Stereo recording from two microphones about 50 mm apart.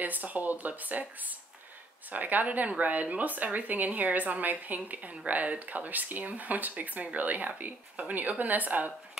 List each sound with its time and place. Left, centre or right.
0.0 s a woman's voice: right
2.1 s a woman's voice: right